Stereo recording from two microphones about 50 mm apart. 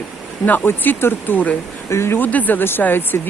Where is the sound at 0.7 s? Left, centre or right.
Left.